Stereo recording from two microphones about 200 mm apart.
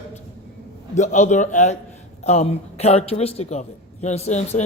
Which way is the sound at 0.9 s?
35° left (ahead or behind).